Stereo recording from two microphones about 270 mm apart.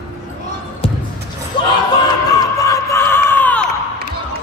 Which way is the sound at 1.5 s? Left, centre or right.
Centre.